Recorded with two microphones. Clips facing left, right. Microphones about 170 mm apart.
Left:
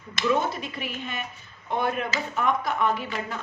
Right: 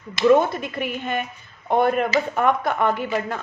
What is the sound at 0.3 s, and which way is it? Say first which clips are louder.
Speech: right 9 dB; 55° right (ahead or behind).